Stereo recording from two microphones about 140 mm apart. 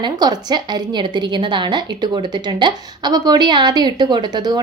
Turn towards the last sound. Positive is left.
turn(degrees=-30)  # may be behind; listen again after turning